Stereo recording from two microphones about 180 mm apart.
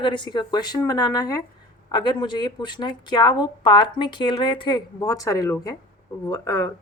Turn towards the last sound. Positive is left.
turn(degrees=20)  # may be behind; listen again after turning